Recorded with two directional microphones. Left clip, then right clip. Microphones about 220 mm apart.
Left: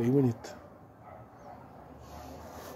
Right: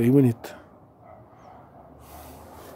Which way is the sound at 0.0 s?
40° right (ahead or behind).